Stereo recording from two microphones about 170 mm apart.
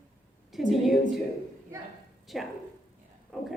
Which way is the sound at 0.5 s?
Centre (ahead or behind).